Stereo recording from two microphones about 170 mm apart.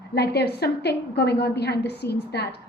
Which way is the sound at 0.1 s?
75° left (ahead or behind).